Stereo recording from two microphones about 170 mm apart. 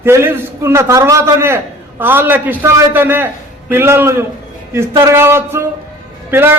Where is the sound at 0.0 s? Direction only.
15° right (ahead or behind).